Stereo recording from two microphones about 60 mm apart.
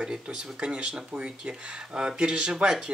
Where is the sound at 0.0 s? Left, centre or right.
Centre.